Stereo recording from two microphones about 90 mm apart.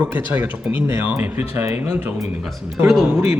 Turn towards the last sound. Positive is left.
turn(degrees=-25)  # may be behind; listen again after turning